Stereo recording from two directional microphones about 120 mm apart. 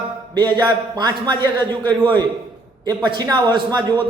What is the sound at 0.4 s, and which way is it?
A man's voice, 35° right (ahead or behind).